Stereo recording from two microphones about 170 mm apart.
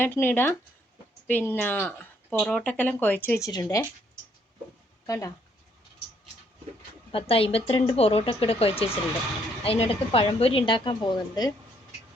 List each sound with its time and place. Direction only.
0.0 s speech: 10° left (ahead or behind)
5.0 s speech: 20° left (ahead or behind)
7.1 s a woman's voice: 35° left (ahead or behind)